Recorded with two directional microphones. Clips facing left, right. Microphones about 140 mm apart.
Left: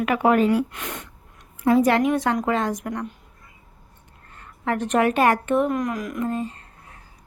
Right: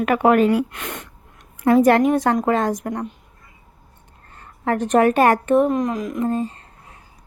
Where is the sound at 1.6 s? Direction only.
55° right (ahead or behind).